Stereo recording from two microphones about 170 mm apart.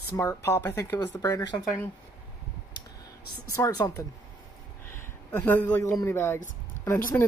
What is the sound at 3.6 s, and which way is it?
Speech, 20° left (ahead or behind).